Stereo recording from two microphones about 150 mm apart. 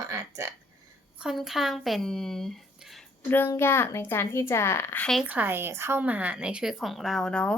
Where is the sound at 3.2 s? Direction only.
15° left (ahead or behind).